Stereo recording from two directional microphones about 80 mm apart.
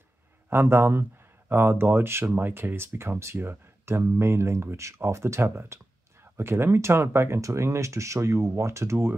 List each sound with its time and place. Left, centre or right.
0.5 s speech: right